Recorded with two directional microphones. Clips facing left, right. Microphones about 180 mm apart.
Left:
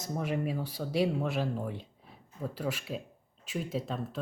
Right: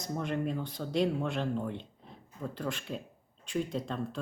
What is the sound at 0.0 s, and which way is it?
Speech, 5° left (ahead or behind).